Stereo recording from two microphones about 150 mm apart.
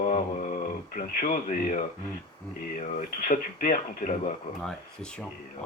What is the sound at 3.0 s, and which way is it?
Speech, 60° left (ahead or behind).